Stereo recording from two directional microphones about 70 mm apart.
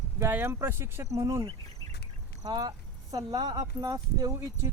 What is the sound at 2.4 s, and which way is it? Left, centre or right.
Speech, right.